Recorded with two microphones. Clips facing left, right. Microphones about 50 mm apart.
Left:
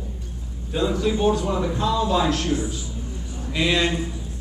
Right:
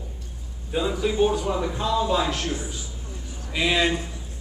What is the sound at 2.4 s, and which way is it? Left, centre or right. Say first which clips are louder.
Speech: left 5 dB; centre.